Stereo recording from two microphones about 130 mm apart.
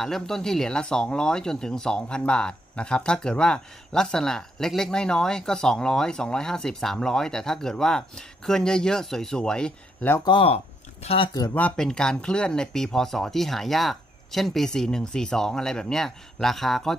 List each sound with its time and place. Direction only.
0.0 s speech: 5° left (ahead or behind)
10.2 s speech: 40° left (ahead or behind)
11.5 s speech: 10° left (ahead or behind)